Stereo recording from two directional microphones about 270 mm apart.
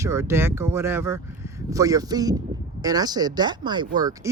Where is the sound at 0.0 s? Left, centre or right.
Centre.